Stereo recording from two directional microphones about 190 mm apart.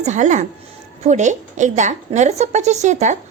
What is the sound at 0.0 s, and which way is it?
A woman's voice, 40° right (ahead or behind).